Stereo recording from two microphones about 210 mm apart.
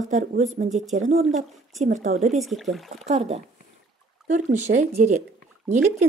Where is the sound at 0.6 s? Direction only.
35° right (ahead or behind).